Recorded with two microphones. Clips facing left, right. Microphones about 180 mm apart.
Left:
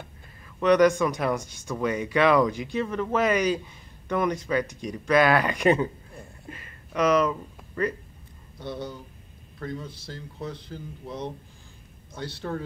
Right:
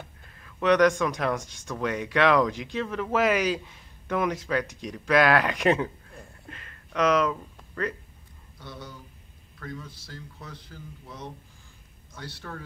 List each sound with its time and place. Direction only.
0.6 s speech: centre (ahead or behind)
8.5 s a man's voice: 25° left (ahead or behind)